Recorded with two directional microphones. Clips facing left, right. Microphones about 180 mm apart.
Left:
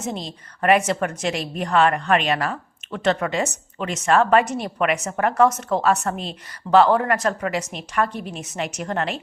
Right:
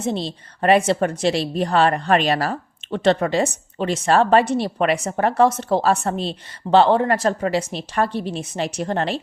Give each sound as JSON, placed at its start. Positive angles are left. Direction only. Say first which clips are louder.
{"t": 0.0, "sound": "a woman's voice", "louder": "right 5 dB", "side_deg": -30}